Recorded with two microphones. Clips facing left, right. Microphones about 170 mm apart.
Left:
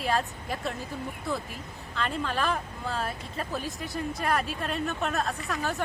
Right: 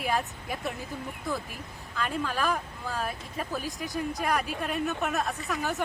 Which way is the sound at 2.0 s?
5° right (ahead or behind).